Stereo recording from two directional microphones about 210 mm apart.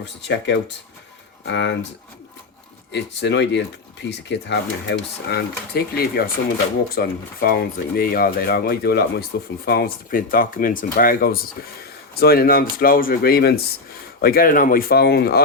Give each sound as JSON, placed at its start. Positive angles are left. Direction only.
{"t": 0.0, "sound": "speech", "side_deg": 55}
{"t": 2.9, "sound": "speech", "side_deg": 55}